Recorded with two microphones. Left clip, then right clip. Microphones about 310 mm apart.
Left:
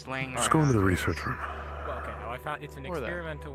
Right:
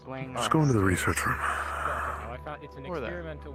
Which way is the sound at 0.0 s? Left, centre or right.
Left.